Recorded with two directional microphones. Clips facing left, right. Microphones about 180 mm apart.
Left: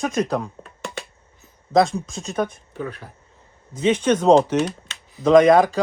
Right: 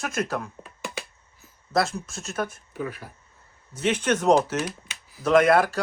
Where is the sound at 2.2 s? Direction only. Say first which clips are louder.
Left 5 dB; 15° left (ahead or behind).